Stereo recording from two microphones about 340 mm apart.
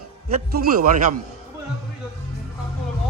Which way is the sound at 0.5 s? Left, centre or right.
Right.